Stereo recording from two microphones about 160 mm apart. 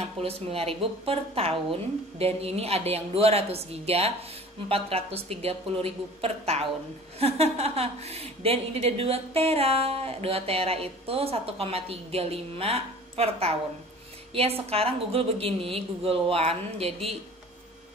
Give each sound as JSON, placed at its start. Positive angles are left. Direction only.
{"t": 0.2, "sound": "a woman's voice", "side_deg": -35}